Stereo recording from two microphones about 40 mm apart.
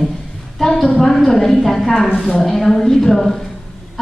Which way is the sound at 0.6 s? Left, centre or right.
Centre.